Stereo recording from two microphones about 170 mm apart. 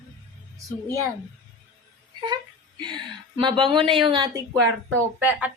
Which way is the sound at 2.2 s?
25° right (ahead or behind).